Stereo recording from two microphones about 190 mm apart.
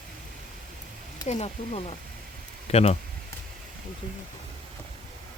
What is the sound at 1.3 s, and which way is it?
Speech, 35° left (ahead or behind).